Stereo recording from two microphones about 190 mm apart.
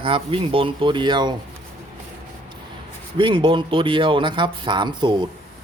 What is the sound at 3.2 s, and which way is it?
A man's voice, 25° right (ahead or behind).